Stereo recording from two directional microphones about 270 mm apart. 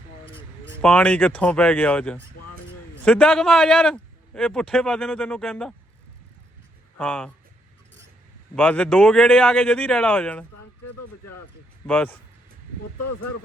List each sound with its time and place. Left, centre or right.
0.8 s a man's voice: centre
7.0 s a man's voice: centre
8.5 s a man's voice: centre
10.8 s speech: left
11.9 s a man's voice: centre
13.0 s speech: left